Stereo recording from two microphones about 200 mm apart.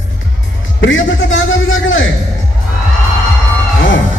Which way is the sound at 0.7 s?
70° left (ahead or behind).